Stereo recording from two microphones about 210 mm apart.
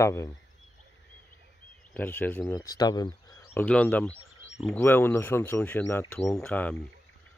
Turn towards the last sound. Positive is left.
turn(degrees=5)  # may be behind; listen again after turning